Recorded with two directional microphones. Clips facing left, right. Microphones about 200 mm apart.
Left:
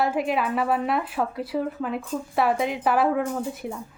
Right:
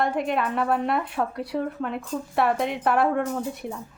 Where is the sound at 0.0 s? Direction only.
5° left (ahead or behind).